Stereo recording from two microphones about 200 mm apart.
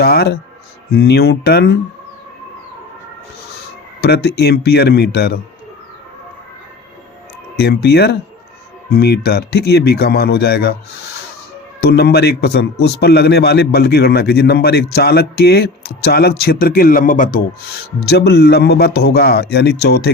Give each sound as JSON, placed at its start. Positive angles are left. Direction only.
{"t": 0.0, "sound": "a man's voice", "side_deg": 50}
{"t": 4.0, "sound": "a man's voice", "side_deg": 55}
{"t": 7.5, "sound": "a man's voice", "side_deg": 55}
{"t": 11.9, "sound": "a man's voice", "side_deg": 50}
{"t": 18.1, "sound": "a man's voice", "side_deg": 55}